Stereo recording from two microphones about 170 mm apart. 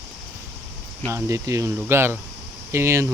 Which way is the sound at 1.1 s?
20° right (ahead or behind).